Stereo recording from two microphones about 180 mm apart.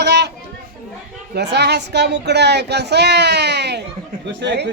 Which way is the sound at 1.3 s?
70° right (ahead or behind).